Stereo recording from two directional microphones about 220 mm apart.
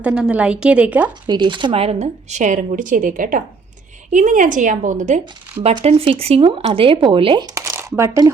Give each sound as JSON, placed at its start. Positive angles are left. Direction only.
{"t": 0.0, "sound": "a woman's voice", "side_deg": -5}
{"t": 1.3, "sound": "speech", "side_deg": -20}